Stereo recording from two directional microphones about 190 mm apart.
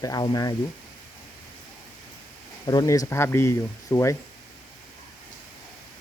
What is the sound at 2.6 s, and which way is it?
Speech, 20° left (ahead or behind).